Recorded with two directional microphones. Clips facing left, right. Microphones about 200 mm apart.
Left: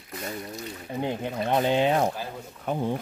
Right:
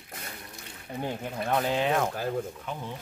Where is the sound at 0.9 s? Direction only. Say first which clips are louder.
Left 4 dB; 20° left (ahead or behind).